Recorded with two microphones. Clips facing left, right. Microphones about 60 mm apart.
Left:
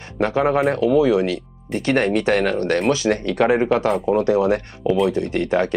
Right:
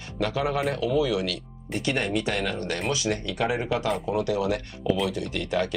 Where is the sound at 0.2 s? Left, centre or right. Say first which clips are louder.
Left 8 dB; left.